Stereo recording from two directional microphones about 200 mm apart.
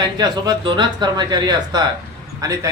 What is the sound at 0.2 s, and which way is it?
A man's voice, 20° right (ahead or behind).